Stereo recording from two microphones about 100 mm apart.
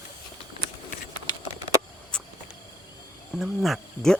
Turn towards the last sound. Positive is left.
turn(degrees=0)  # may be behind; listen again after turning